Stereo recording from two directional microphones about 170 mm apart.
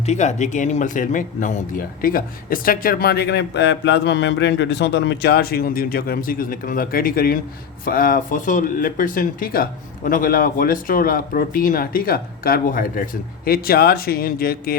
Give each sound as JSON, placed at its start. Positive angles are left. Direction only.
{"t": 0.0, "sound": "speech", "side_deg": 40}